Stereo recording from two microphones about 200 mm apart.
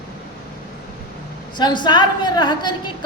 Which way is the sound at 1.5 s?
20° left (ahead or behind).